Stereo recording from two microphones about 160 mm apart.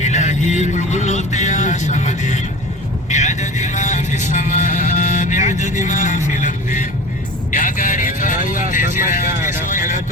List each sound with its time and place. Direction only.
0.0 s music: 45° left (ahead or behind)
3.1 s vehicle: 50° left (ahead or behind)